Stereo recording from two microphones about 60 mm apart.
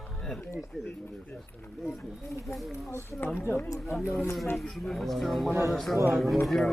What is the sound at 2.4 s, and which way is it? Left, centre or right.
Speech, centre.